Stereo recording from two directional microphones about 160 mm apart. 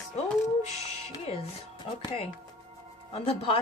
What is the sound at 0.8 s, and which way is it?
Music, 40° left (ahead or behind).